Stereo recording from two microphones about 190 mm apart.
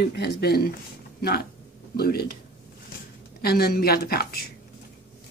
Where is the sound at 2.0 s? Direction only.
55° left (ahead or behind).